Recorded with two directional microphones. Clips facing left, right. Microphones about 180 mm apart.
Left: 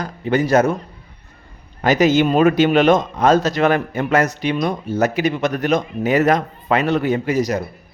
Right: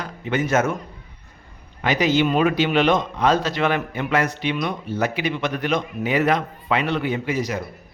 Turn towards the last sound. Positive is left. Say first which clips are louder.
# left 5 dB
turn(degrees=40)  # may be behind; listen again after turning